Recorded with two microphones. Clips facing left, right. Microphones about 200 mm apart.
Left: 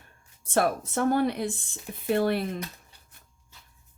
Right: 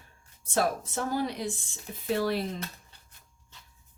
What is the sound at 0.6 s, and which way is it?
Speech, 60° left (ahead or behind).